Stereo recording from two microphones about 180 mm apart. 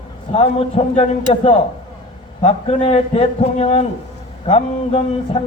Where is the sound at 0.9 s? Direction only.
35° left (ahead or behind).